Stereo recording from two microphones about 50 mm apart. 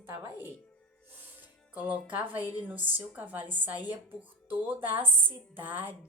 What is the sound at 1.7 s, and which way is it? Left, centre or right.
A woman's voice, right.